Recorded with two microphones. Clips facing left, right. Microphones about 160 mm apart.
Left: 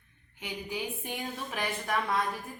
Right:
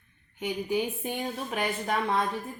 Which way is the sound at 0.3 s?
30° right (ahead or behind).